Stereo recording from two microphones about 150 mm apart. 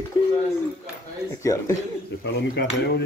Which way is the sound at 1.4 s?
20° left (ahead or behind).